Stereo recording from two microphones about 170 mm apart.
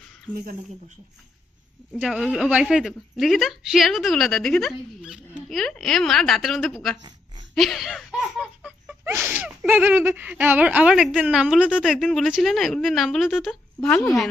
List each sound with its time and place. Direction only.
0.3 s speech: 30° right (ahead or behind)
1.9 s laughter: 5° right (ahead or behind)